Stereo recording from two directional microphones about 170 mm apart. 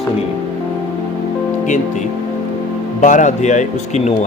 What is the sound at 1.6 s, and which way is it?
A man's voice, 45° left (ahead or behind).